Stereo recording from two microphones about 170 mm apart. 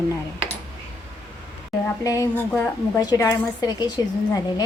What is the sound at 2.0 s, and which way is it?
A woman's voice, 20° left (ahead or behind).